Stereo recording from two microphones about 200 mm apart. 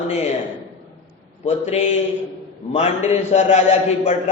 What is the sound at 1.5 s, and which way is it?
A man's voice, 35° left (ahead or behind).